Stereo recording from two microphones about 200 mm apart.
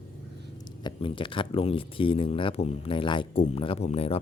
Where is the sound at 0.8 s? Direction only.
25° left (ahead or behind).